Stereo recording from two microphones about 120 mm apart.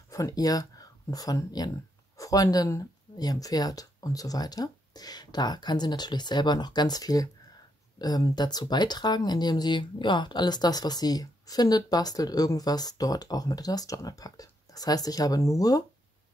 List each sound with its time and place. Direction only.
0.1 s speech: 30° left (ahead or behind)